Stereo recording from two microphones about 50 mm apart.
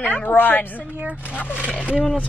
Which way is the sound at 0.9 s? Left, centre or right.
Right.